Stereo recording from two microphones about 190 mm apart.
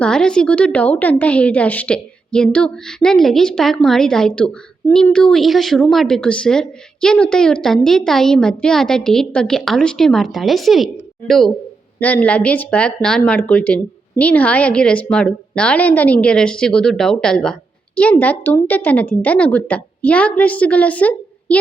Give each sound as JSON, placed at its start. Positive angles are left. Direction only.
{"t": 0.0, "sound": "a woman's voice", "side_deg": 5}